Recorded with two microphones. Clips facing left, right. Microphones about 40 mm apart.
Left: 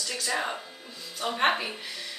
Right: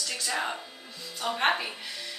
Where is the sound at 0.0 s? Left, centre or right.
Centre.